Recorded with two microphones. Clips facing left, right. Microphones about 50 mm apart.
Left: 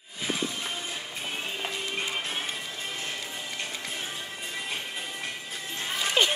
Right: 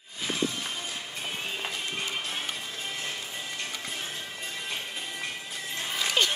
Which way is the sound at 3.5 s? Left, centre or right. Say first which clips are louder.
Even; left.